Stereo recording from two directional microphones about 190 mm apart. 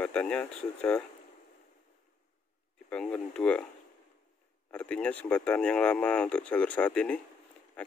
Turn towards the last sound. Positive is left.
turn(degrees=5)  # may be behind; listen again after turning